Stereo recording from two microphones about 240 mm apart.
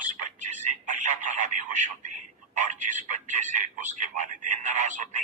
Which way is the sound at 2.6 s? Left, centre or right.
Right.